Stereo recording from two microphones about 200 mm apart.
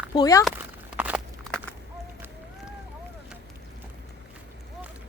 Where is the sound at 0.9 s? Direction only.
10° right (ahead or behind).